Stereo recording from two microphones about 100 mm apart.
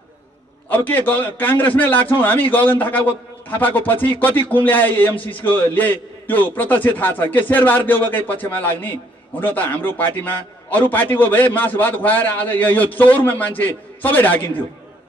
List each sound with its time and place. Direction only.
0.7 s a man's voice: 20° left (ahead or behind)